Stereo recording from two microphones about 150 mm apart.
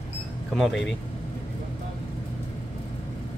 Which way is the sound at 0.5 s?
Centre (ahead or behind).